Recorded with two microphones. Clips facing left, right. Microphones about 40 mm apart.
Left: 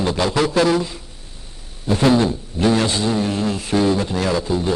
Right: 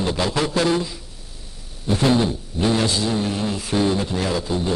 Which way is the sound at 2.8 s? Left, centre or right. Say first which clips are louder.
Left 2 dB; left.